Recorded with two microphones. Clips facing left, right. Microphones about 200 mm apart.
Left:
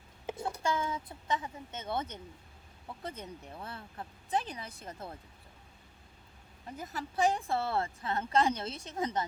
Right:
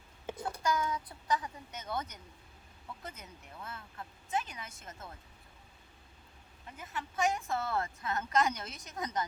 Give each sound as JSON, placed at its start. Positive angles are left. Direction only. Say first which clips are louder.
{"t": 0.5, "sound": "a woman's voice", "louder": "right 2 dB", "side_deg": 25}
{"t": 6.7, "sound": "a woman's voice", "louder": "left 3 dB", "side_deg": 35}